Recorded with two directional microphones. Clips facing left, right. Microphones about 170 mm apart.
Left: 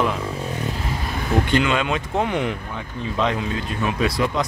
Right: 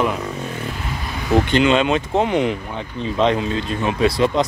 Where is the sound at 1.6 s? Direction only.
25° right (ahead or behind).